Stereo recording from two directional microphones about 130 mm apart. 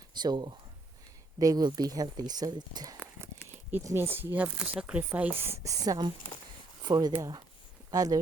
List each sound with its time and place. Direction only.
0.1 s speech: 35° right (ahead or behind)
3.7 s a woman's voice: 20° right (ahead or behind)